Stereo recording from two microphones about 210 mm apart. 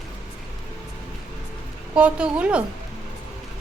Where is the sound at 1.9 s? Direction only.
5° right (ahead or behind).